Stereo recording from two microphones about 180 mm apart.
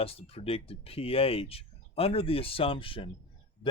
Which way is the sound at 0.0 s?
30° left (ahead or behind).